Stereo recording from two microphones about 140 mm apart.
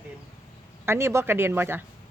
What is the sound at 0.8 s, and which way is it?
A woman's voice, 15° right (ahead or behind).